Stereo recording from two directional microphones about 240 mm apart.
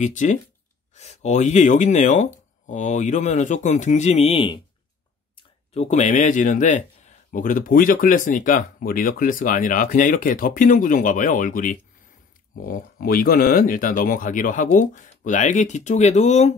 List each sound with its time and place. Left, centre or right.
0.0 s speech: left